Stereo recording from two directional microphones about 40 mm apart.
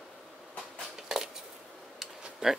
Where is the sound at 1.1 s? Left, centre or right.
Centre.